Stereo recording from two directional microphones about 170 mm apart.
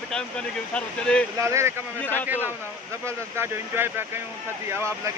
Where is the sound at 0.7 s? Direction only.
5° left (ahead or behind).